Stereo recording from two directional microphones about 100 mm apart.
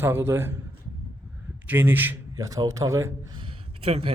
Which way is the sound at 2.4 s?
35° right (ahead or behind).